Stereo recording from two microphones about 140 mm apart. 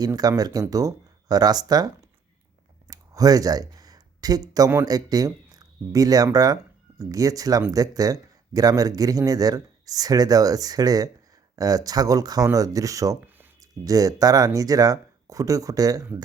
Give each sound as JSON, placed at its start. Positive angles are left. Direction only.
{"t": 0.0, "sound": "speech", "side_deg": -25}
{"t": 2.8, "sound": "a sound", "side_deg": -25}
{"t": 4.9, "sound": "speech", "side_deg": -25}